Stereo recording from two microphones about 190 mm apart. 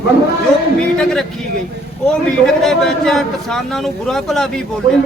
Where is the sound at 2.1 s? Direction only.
5° left (ahead or behind).